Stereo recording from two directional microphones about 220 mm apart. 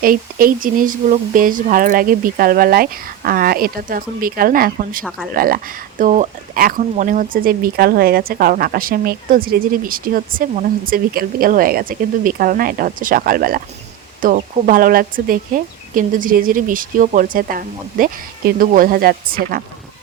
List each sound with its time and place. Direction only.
0.0 s speech: 40° right (ahead or behind)